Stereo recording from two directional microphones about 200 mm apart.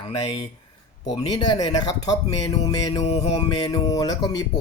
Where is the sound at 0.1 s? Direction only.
25° left (ahead or behind).